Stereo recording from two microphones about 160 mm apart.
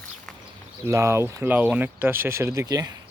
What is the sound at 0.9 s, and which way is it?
Speech, 20° right (ahead or behind).